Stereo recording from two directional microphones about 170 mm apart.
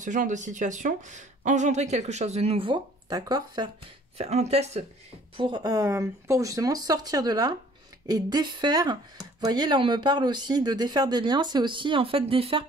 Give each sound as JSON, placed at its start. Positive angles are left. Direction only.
{"t": 0.0, "sound": "speech", "side_deg": -45}
{"t": 4.2, "sound": "speech", "side_deg": -40}
{"t": 5.4, "sound": "speech", "side_deg": -25}